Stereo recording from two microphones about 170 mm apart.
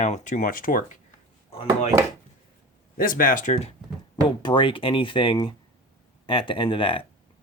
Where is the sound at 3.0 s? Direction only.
55° left (ahead or behind).